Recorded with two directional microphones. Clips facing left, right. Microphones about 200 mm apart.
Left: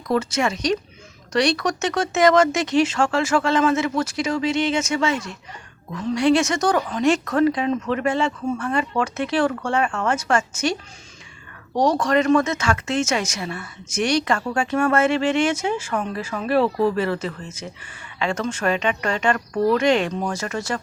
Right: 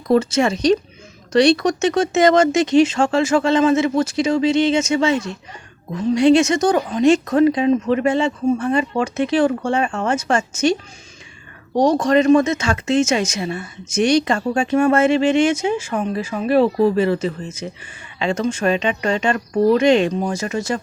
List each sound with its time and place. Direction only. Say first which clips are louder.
0.1 s speech: right 6 dB; 25° right (ahead or behind)